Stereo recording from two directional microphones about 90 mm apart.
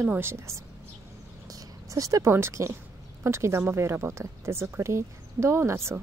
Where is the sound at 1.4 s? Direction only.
40° right (ahead or behind).